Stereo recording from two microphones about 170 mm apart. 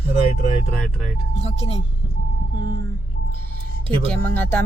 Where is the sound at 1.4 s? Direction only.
35° left (ahead or behind).